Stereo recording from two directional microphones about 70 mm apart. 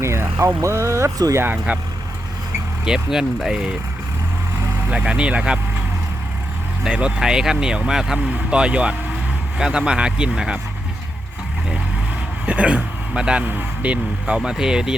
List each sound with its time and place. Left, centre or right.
0.0 s speech: right
2.8 s speech: centre
4.9 s speech: centre
6.8 s speech: centre
12.5 s speech: centre